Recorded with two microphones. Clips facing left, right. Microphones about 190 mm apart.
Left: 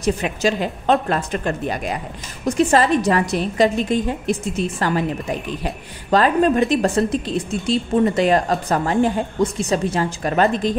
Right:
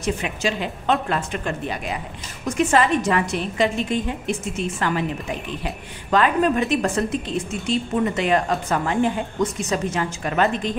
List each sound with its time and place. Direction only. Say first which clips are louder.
0.0 s a woman's voice: left 4 dB; 40° left (ahead or behind)